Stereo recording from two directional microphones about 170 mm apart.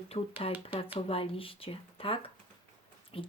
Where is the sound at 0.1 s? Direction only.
35° left (ahead or behind).